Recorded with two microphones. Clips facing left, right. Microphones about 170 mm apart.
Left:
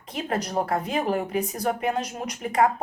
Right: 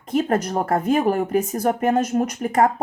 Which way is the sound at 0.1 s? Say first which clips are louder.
Right 7 dB; 50° right (ahead or behind).